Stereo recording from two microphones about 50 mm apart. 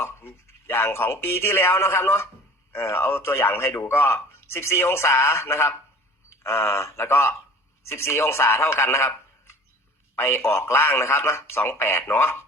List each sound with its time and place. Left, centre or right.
0.0 s speech: left
3.7 s speech: left
10.2 s speech: left